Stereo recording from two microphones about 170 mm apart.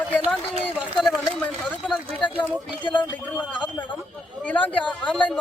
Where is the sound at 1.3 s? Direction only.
5° left (ahead or behind).